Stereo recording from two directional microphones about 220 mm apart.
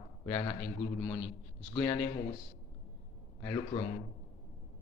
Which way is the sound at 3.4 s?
15° left (ahead or behind).